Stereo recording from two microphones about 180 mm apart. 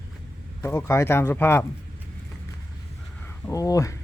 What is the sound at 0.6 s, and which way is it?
Speech, 15° left (ahead or behind).